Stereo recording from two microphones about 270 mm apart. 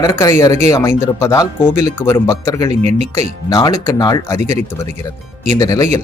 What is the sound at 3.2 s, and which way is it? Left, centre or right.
Speech, centre.